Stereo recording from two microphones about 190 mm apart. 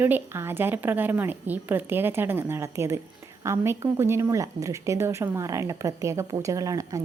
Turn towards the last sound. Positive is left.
turn(degrees=-20)  # may be behind; listen again after turning